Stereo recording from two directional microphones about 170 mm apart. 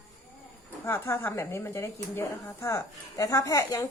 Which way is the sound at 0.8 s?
15° left (ahead or behind).